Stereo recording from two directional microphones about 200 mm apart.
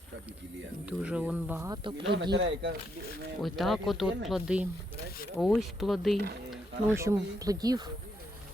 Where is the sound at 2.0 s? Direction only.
60° right (ahead or behind).